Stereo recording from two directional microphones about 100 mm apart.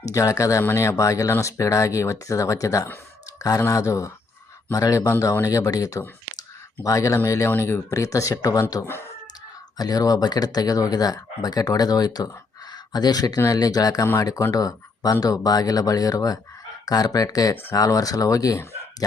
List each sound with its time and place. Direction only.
0.0 s speech: 35° left (ahead or behind)
9.7 s speech: 40° left (ahead or behind)
17.5 s speech: 25° left (ahead or behind)
17.7 s speech: 35° left (ahead or behind)